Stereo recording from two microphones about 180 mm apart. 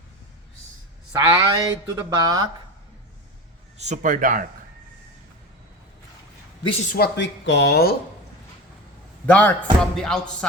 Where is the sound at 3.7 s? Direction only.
40° right (ahead or behind).